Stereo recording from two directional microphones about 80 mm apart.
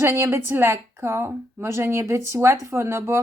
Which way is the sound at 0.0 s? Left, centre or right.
Right.